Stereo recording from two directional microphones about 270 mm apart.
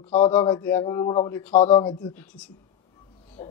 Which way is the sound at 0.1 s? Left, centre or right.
Left.